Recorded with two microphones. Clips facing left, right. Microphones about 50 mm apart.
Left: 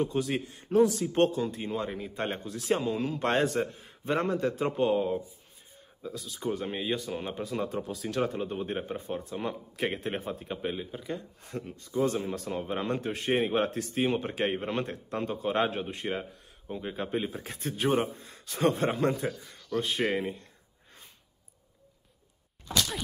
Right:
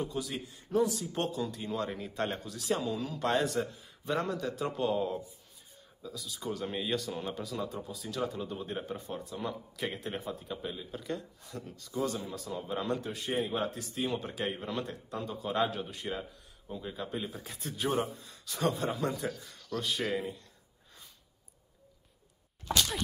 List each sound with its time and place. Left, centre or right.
0.0 s speech: left
1.9 s speech: centre
2.1 s speech: left
6.0 s speech: left
10.9 s speech: centre
11.4 s speech: left